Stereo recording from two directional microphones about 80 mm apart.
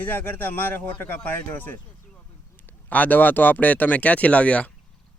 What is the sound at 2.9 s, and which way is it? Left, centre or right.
Speech, left.